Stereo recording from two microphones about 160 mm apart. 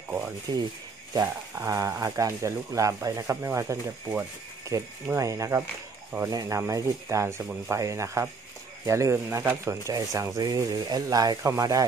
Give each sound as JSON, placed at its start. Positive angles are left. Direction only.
{"t": 0.5, "sound": "speech", "side_deg": -25}